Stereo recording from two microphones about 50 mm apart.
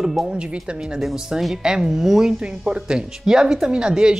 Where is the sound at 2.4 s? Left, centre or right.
Centre.